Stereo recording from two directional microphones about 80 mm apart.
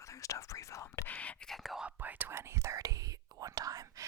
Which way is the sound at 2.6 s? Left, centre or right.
Right.